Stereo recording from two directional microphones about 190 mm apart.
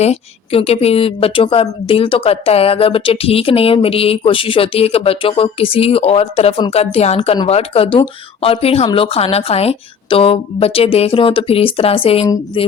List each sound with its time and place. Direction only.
0.0 s speech: 35° left (ahead or behind)